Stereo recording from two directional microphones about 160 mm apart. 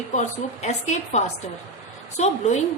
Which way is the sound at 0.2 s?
45° left (ahead or behind).